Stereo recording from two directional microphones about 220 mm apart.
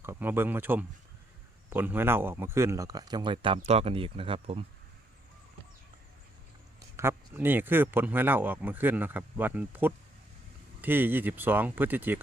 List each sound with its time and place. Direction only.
0.0 s speech: 10° right (ahead or behind)
6.9 s speech: 10° right (ahead or behind)